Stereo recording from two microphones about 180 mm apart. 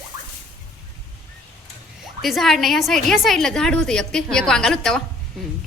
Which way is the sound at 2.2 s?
Centre (ahead or behind).